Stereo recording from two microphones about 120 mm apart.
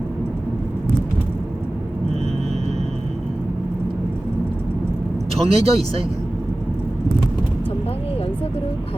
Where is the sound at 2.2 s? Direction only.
60° right (ahead or behind).